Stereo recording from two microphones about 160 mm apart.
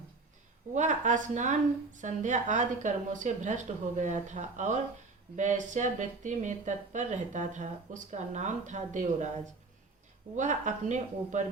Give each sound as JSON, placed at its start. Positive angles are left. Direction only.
{"t": 0.7, "sound": "a woman's voice", "side_deg": -50}
{"t": 10.3, "sound": "a woman's voice", "side_deg": -50}